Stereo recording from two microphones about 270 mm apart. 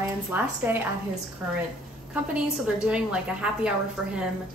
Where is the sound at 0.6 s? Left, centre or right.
Centre.